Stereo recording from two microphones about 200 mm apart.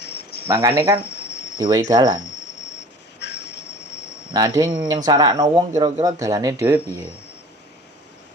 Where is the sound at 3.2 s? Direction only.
60° left (ahead or behind).